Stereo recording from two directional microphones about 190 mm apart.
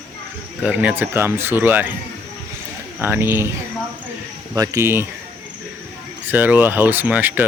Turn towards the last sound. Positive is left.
turn(degrees=-10)  # may be behind; listen again after turning